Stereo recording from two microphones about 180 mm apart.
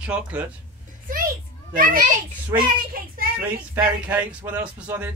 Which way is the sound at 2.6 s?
55° right (ahead or behind).